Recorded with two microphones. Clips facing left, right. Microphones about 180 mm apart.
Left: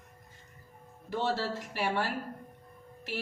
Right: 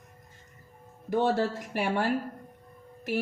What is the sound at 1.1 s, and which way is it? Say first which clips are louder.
A woman's voice: right 6 dB; 45° right (ahead or behind).